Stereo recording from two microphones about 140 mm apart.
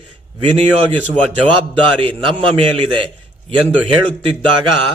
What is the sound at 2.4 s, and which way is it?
Speech, 40° right (ahead or behind).